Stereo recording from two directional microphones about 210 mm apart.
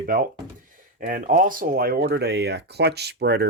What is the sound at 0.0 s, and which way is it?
Speech, 45° right (ahead or behind).